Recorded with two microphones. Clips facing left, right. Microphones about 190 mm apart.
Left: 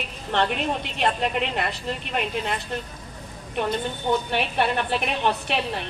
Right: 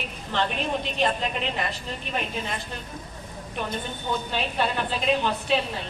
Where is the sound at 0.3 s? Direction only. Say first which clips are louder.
Left 2 dB; 65° left (ahead or behind).